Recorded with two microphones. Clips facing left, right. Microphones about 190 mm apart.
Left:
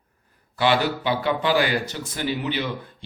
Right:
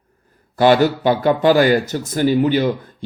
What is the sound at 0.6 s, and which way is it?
Speech, 45° right (ahead or behind).